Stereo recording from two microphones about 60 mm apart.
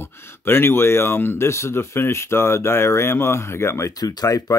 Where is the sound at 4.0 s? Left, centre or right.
Left.